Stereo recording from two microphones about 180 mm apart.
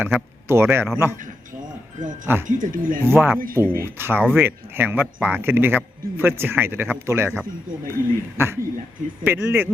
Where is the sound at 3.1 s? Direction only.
10° right (ahead or behind).